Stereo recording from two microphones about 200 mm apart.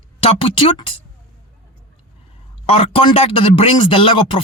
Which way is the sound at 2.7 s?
30° left (ahead or behind).